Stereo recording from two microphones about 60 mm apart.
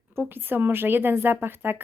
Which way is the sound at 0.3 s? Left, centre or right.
Right.